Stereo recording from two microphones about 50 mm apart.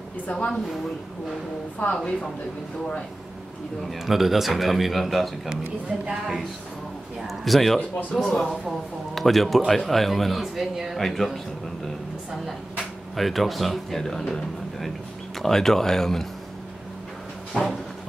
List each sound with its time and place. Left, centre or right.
0.3 s a woman's voice: left
1.8 s a woman's voice: left
4.0 s speech: centre
13.1 s speech: centre
17.6 s speech: centre